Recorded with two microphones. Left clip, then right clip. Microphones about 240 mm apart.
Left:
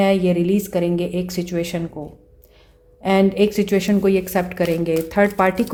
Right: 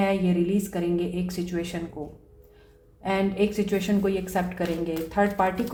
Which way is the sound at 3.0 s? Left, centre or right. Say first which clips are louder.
Left 8 dB; left.